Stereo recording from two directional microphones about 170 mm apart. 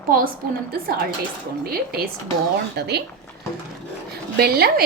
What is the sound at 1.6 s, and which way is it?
Speech, 60° right (ahead or behind).